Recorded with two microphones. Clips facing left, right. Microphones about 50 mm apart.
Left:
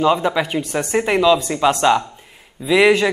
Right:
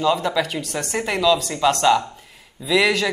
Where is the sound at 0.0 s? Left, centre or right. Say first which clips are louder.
Left 3 dB; left.